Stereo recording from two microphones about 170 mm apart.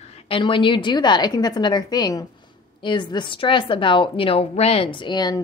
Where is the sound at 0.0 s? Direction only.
35° left (ahead or behind).